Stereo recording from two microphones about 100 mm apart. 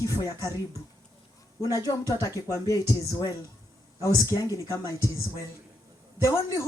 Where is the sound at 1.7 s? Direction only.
35° left (ahead or behind).